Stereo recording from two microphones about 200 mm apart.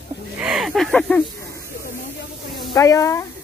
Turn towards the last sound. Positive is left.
turn(degrees=15)  # may be behind; listen again after turning